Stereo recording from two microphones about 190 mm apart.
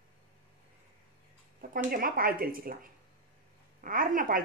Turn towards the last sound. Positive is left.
turn(degrees=-45)  # may be behind; listen again after turning